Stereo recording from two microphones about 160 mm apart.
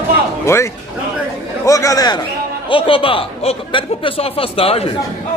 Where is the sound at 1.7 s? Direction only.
20° left (ahead or behind); by 4.9 s 40° left (ahead or behind).